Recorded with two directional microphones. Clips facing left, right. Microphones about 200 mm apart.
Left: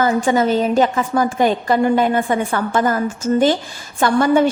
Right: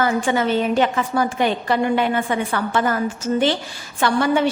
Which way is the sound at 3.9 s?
45° left (ahead or behind).